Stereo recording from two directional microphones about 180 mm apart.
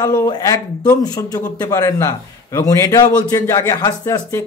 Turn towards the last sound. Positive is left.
turn(degrees=20)  # may be behind; listen again after turning